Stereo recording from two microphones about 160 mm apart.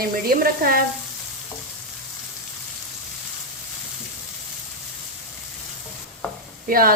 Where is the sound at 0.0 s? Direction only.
70° right (ahead or behind).